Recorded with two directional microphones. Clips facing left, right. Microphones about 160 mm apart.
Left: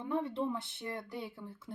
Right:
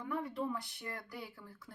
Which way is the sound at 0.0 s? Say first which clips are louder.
Left 4 dB; 25° left (ahead or behind).